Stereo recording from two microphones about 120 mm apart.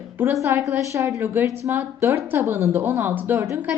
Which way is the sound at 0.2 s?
15° right (ahead or behind).